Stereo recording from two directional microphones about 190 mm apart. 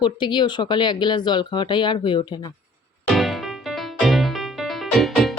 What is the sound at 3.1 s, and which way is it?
Music, centre (ahead or behind).